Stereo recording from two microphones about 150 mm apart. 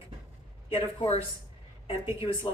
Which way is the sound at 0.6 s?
40° left (ahead or behind).